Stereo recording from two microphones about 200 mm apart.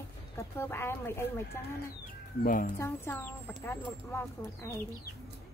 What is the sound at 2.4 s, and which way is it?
Speech, 40° left (ahead or behind).